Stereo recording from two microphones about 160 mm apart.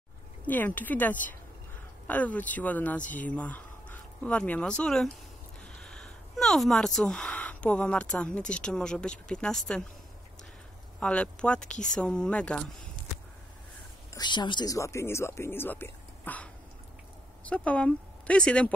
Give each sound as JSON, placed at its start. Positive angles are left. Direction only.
{"t": 0.5, "sound": "speech", "side_deg": 10}
{"t": 11.0, "sound": "speech", "side_deg": 5}
{"t": 14.1, "sound": "speech", "side_deg": 30}
{"t": 17.5, "sound": "speech", "side_deg": 10}